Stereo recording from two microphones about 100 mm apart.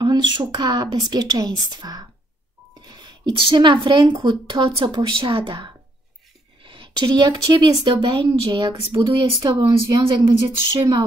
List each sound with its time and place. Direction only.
0.0 s speech: 50° right (ahead or behind)
9.6 s speech: 60° right (ahead or behind)
10.8 s speech: 50° right (ahead or behind)